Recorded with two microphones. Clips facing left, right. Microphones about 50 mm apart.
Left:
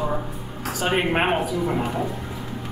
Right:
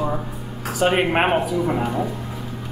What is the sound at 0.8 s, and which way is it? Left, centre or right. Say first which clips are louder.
Speech: right 4 dB; centre.